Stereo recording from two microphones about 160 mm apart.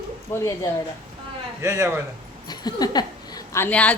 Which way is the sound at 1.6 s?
15° right (ahead or behind).